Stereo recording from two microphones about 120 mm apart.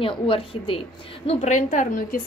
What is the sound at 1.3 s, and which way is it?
Speech, 80° left.